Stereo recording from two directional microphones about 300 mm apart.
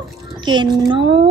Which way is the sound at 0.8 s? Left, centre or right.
Centre.